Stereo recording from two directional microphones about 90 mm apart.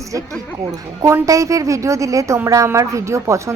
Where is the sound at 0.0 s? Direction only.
40° right (ahead or behind).